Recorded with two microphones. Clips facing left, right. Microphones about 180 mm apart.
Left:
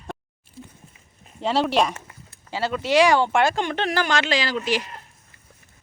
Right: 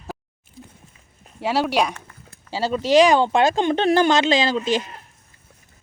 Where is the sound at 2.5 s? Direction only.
35° right (ahead or behind).